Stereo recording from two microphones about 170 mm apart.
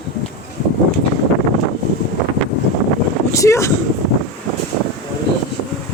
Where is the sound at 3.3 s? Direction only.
20° left (ahead or behind).